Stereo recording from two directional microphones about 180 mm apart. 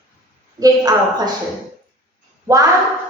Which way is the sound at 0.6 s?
20° right (ahead or behind).